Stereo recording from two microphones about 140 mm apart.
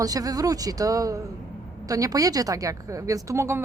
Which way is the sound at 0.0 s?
25° right (ahead or behind).